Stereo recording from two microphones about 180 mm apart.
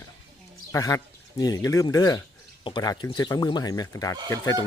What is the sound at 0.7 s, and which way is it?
Speech, 20° left (ahead or behind).